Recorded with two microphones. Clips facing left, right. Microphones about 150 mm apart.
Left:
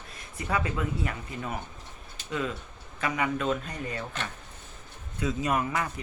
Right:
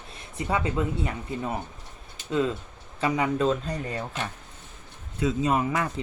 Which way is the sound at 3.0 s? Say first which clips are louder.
Right 5 dB; 30° right (ahead or behind).